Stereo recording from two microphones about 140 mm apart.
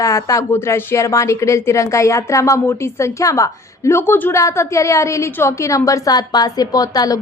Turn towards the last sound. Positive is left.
turn(degrees=25)  # may be behind; listen again after turning